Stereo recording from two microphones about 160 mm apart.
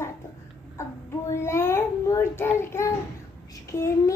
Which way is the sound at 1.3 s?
15° left (ahead or behind).